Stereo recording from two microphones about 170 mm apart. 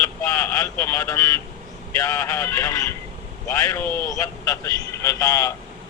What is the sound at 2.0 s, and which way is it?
Speech, 20° left (ahead or behind).